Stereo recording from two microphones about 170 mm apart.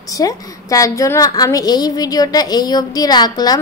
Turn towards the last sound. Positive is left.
turn(degrees=25)  # may be behind; listen again after turning